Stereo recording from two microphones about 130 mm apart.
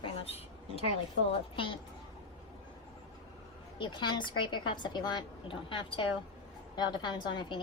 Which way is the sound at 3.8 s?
35° left (ahead or behind).